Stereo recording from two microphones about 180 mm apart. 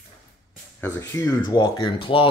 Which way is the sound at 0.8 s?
15° left (ahead or behind).